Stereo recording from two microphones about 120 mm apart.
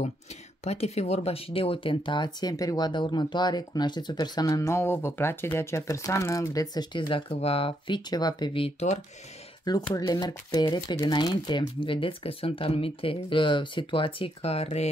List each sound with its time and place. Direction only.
0.7 s speech: 60° left (ahead or behind); by 8.5 s 35° left (ahead or behind)
8.5 s speech: 55° left (ahead or behind)
9.7 s speech: 35° left (ahead or behind); by 14.9 s 60° left (ahead or behind)